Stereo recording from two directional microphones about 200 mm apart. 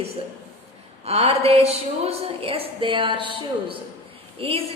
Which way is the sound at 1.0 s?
30° right (ahead or behind).